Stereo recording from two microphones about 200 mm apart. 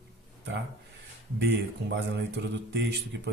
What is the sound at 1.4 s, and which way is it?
Speech, 60° right (ahead or behind).